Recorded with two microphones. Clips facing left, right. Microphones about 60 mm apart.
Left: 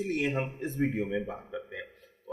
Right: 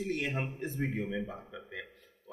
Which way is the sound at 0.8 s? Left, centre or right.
Centre.